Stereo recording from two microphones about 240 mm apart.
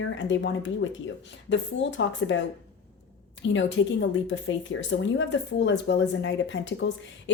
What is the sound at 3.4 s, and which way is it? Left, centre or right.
Speech, left.